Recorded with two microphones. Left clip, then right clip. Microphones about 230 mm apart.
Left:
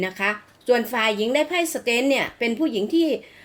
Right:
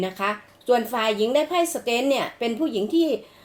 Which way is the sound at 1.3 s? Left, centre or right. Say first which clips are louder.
Right 1 dB; left.